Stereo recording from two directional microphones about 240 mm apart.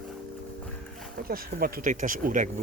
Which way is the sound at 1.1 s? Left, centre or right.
Right.